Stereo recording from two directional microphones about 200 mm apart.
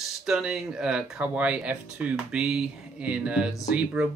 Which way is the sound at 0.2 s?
5° right (ahead or behind).